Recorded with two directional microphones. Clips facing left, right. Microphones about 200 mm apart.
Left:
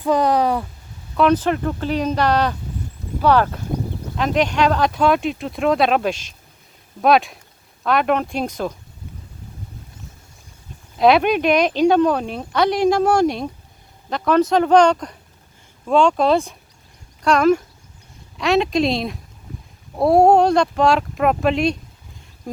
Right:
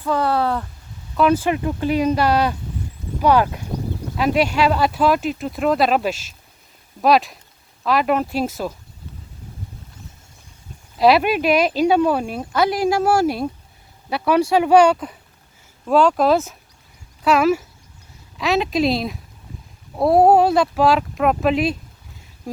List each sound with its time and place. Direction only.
0.0 s speech: 15° left (ahead or behind)
1.1 s speech: 5° right (ahead or behind)
10.9 s speech: centre (ahead or behind)